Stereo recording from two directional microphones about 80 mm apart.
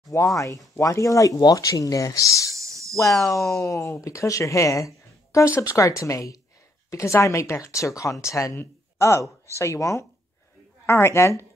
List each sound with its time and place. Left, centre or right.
0.1 s speech: left
2.5 s a sound: right
3.3 s speech: left